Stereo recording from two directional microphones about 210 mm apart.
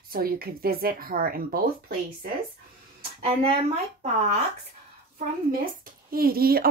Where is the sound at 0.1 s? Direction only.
45° right (ahead or behind).